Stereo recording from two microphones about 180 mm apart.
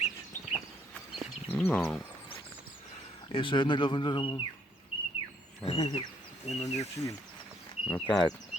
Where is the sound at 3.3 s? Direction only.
25° left (ahead or behind).